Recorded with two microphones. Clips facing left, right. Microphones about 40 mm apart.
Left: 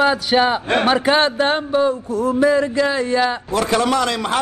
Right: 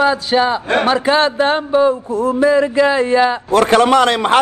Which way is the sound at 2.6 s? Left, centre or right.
Centre.